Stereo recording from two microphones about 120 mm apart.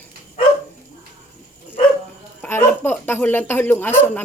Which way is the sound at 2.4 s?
20° left (ahead or behind).